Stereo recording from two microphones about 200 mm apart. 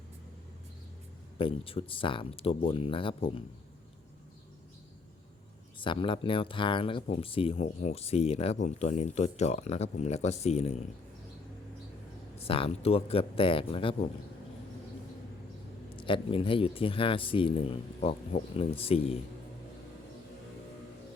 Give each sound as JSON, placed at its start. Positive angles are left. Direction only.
{"t": 1.4, "sound": "speech", "side_deg": 25}
{"t": 5.8, "sound": "speech", "side_deg": 25}
{"t": 12.4, "sound": "speech", "side_deg": 30}
{"t": 16.0, "sound": "speech", "side_deg": 25}